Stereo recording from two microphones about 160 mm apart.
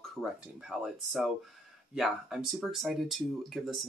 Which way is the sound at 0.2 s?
Centre (ahead or behind).